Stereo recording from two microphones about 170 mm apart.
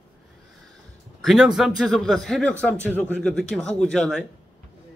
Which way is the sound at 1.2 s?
Centre (ahead or behind).